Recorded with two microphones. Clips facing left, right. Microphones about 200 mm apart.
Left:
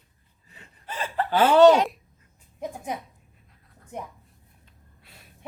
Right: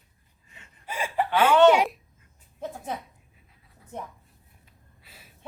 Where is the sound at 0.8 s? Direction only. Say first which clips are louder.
Right 1 dB; 10° right (ahead or behind).